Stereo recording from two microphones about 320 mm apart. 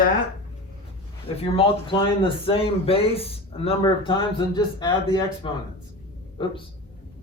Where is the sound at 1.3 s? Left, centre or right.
Centre.